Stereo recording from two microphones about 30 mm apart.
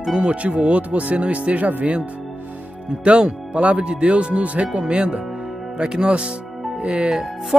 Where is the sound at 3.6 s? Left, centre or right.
Right.